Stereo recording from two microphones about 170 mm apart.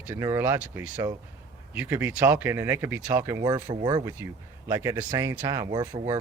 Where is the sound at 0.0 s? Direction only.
15° right (ahead or behind).